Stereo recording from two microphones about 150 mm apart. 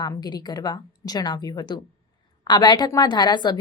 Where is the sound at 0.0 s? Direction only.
25° left (ahead or behind).